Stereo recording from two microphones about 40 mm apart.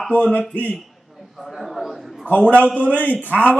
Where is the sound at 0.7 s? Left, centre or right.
Centre.